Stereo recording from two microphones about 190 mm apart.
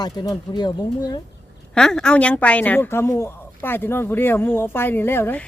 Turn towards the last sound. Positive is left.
turn(degrees=10)  # may be behind; listen again after turning